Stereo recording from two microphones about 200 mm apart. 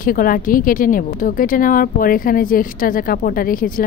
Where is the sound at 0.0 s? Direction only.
45° left (ahead or behind).